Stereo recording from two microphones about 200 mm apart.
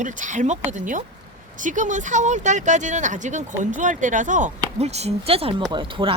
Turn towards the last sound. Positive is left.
turn(degrees=-25)  # may be behind; listen again after turning